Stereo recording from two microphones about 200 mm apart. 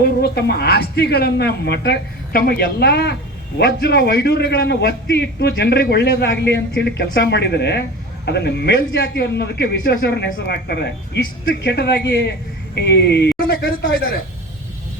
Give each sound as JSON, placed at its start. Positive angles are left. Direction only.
{"t": 0.2, "sound": "a man's voice", "side_deg": 55}